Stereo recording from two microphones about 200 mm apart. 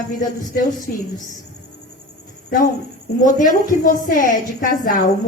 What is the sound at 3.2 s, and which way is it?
A woman's voice, 40° left (ahead or behind).